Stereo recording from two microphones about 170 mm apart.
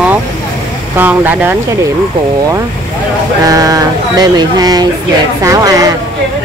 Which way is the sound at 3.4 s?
20° right (ahead or behind).